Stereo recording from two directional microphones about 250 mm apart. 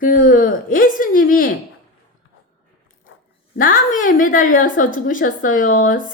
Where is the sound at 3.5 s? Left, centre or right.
Left.